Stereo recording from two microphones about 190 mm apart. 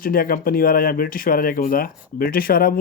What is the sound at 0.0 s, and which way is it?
Speech, 50° left (ahead or behind).